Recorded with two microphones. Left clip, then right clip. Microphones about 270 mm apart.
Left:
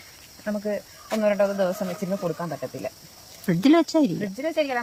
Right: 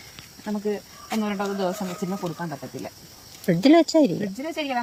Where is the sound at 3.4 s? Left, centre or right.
Centre.